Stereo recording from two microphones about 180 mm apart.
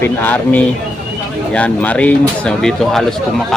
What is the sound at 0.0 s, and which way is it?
Speech, 10° left (ahead or behind).